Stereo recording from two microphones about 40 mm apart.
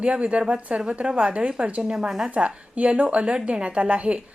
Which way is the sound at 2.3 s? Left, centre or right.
Right.